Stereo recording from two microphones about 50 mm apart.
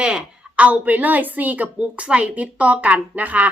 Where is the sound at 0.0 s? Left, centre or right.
Right.